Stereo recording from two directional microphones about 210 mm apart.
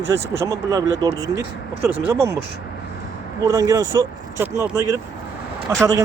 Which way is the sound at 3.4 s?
15° right (ahead or behind).